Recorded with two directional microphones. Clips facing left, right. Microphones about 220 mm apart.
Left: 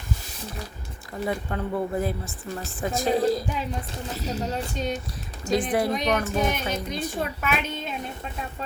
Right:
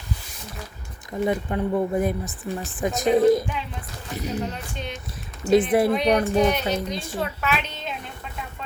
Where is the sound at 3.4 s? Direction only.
45° left (ahead or behind).